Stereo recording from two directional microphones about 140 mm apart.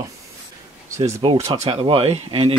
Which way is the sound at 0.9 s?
20° right (ahead or behind).